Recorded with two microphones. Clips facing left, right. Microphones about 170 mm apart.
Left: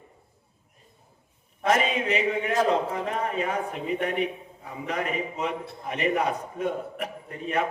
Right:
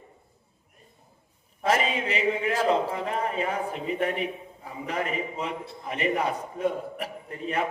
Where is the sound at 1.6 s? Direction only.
30° right (ahead or behind).